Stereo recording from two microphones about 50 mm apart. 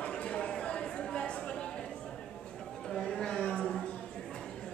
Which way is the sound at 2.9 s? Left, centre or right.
Centre.